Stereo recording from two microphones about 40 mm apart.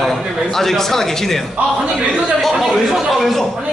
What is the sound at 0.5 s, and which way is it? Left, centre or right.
Speech, centre.